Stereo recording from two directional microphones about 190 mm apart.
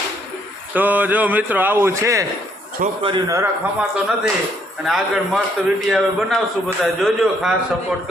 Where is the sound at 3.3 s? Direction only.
15° right (ahead or behind).